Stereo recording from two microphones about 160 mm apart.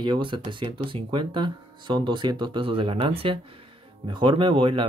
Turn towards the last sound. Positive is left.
turn(degrees=-35)  # may be behind; listen again after turning